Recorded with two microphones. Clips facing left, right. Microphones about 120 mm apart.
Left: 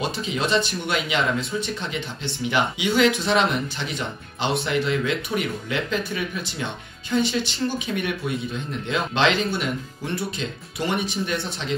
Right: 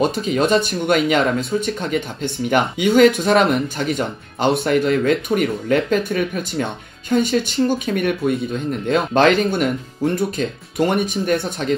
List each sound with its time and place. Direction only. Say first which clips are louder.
0.0 s speech: right 8 dB; 50° right (ahead or behind)